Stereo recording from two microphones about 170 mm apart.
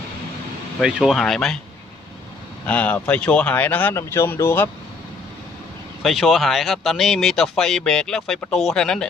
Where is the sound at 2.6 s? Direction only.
10° left (ahead or behind).